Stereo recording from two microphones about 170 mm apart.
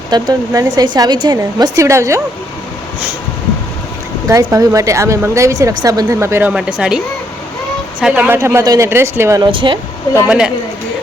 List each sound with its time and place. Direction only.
0.1 s a woman's voice: 25° right (ahead or behind)
4.3 s a woman's voice: 20° right (ahead or behind)
6.5 s speech: 5° right (ahead or behind)
8.0 s speech: 10° right (ahead or behind)
9.5 s speech: 30° right (ahead or behind)
10.2 s speech: 5° right (ahead or behind)